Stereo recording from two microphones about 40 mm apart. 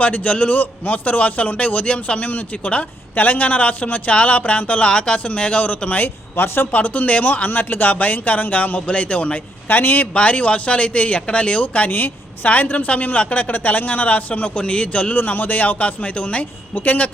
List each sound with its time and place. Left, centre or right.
0.0 s speech: left
3.2 s speech: left
6.0 s speech: left
6.7 s speech: left
8.9 s speech: left
9.6 s speech: left
10.2 s speech: left
11.6 s speech: left
11.9 s speech: left
15.1 s speech: left
16.7 s speech: left